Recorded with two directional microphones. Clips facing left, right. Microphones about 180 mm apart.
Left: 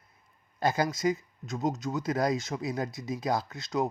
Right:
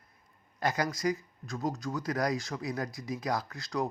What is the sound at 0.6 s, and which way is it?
Speech, 25° left (ahead or behind).